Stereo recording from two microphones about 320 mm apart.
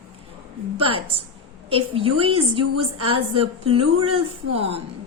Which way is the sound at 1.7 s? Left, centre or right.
Centre.